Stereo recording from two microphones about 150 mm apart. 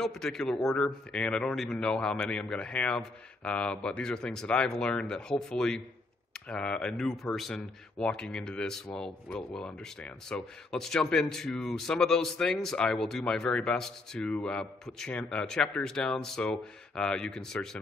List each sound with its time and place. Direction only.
0.0 s speech: 5° left (ahead or behind)